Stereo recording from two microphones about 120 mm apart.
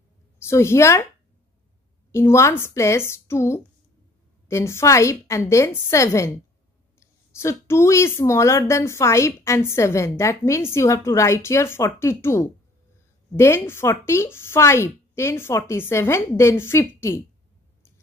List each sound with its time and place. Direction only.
0.4 s speech: 20° left (ahead or behind)
2.1 s a woman's voice: 25° left (ahead or behind)